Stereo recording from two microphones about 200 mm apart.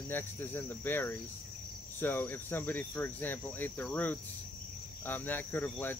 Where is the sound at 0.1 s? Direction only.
10° left (ahead or behind).